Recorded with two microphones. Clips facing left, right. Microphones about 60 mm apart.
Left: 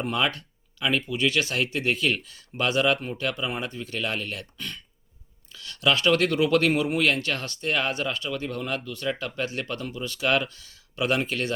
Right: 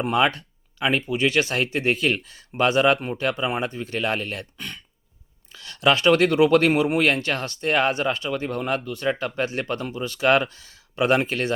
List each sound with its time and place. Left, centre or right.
0.0 s speech: right